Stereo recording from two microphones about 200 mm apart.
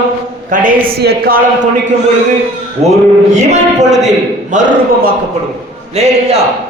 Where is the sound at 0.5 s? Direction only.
40° right (ahead or behind).